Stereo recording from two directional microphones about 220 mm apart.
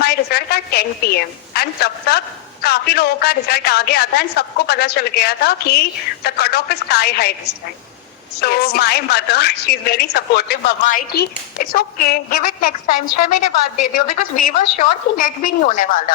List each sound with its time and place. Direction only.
0.0 s a woman's voice: 45° left (ahead or behind)
13.9 s a woman's voice: 35° left (ahead or behind)